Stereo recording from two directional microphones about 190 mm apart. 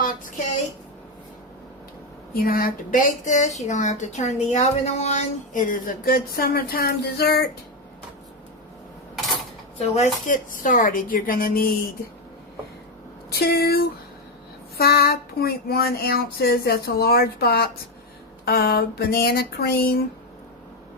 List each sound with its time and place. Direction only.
2.3 s speech: 50° left (ahead or behind)
9.7 s speech: 35° left (ahead or behind); by 11.8 s 50° left (ahead or behind)
13.4 s a sound: 55° left (ahead or behind)